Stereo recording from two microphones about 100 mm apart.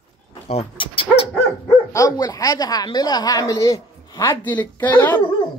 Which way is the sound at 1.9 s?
35° left (ahead or behind).